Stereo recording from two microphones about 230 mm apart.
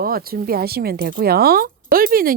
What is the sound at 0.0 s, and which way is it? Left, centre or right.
Speech, right.